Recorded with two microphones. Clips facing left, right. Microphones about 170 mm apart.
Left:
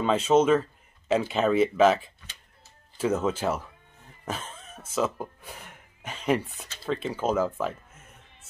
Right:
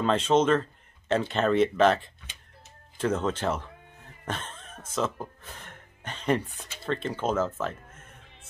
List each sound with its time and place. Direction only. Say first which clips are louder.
0.0 s speech: left 2 dB; 5° left (ahead or behind)